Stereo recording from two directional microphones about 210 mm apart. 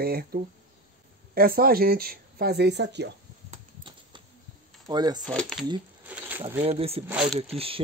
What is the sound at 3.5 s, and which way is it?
Typewriter, 20° right (ahead or behind).